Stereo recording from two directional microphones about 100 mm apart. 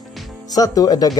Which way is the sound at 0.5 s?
40° left (ahead or behind).